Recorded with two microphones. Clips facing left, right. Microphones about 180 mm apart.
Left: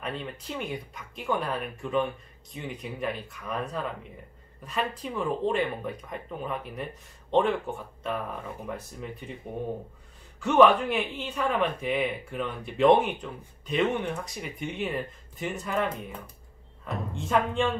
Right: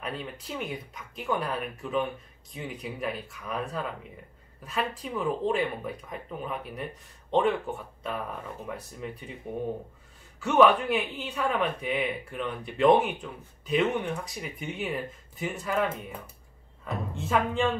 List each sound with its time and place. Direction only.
0.0 s speech: centre (ahead or behind)
10.4 s speech: centre (ahead or behind)